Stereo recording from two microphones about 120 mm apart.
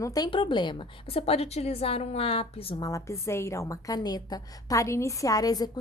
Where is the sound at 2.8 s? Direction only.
30° left (ahead or behind).